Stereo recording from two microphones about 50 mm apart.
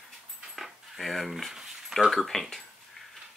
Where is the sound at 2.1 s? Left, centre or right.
Centre.